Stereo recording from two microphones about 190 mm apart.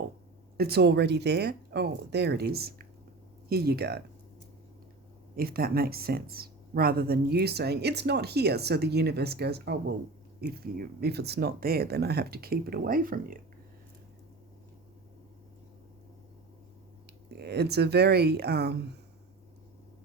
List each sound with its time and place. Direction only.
0.5 s speech: 55° right (ahead or behind)
5.4 s speech: 50° right (ahead or behind)
17.3 s speech: 60° right (ahead or behind)